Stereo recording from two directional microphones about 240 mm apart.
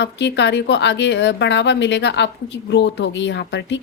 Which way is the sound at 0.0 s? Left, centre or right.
Left.